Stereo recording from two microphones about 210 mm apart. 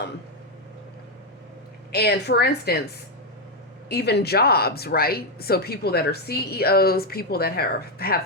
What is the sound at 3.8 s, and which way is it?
Speech, 50° left (ahead or behind).